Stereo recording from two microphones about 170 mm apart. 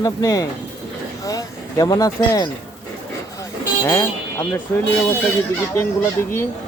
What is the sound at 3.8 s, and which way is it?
Speech, 15° left (ahead or behind).